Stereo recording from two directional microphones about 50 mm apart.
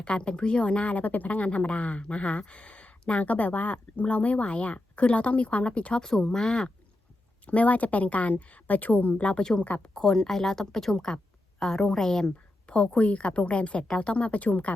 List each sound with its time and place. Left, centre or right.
0.0 s speech: centre
6.0 s speech: centre
7.4 s speech: left
9.4 s a woman's voice: centre
12.7 s speech: left